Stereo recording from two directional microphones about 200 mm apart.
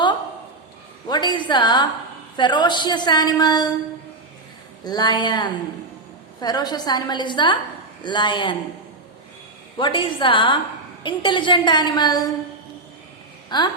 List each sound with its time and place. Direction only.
1.0 s a woman's voice: 20° left (ahead or behind)
4.9 s a woman's voice: 20° left (ahead or behind)
9.7 s a woman's voice: 25° left (ahead or behind)
13.5 s a woman's voice: 20° left (ahead or behind)